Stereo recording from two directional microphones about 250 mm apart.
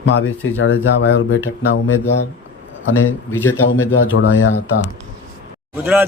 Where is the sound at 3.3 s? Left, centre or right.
Centre.